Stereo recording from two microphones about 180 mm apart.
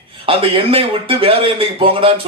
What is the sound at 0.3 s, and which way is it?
Speech, 30° right (ahead or behind).